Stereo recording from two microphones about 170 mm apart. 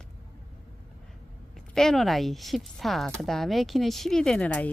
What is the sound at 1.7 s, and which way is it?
Speech, centre (ahead or behind).